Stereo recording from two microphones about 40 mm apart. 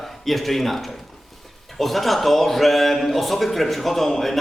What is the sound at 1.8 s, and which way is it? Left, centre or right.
A man's voice, centre.